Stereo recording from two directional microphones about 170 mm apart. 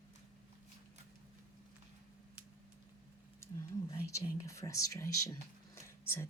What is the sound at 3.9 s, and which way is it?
Speech, 15° left (ahead or behind).